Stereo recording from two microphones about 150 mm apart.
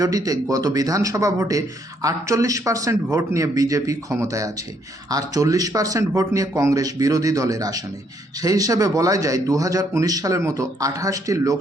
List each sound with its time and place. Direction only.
0.0 s a man's voice: 25° right (ahead or behind)